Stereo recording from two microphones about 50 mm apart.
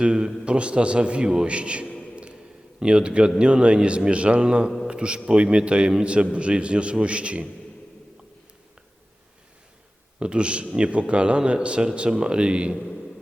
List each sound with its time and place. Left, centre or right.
0.0 s a man's voice: centre
2.1 s a sound: right
2.8 s speech: centre
10.2 s speech: right
12.7 s a man's voice: centre